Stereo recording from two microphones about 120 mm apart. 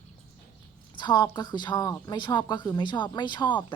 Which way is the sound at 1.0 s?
40° left (ahead or behind).